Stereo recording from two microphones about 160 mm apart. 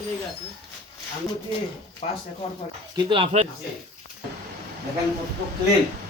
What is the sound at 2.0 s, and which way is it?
Speech, 45° left (ahead or behind).